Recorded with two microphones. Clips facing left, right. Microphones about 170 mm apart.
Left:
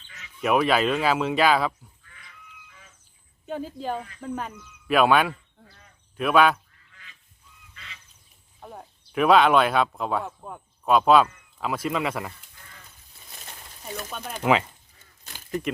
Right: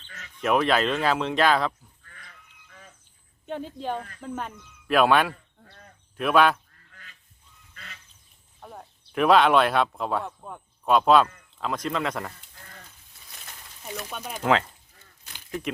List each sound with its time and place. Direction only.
0.4 s speech: 5° left (ahead or behind)
2.0 s goat: 45° right (ahead or behind)
3.4 s speech: 5° left (ahead or behind)
5.6 s cricket: 55° right (ahead or behind)
6.1 s speech: centre (ahead or behind)
6.7 s duck: 45° right (ahead or behind)
7.7 s goose: 45° right (ahead or behind)
8.6 s speech: 5° left (ahead or behind)
13.8 s speech: centre (ahead or behind)
14.4 s speech: 10° left (ahead or behind)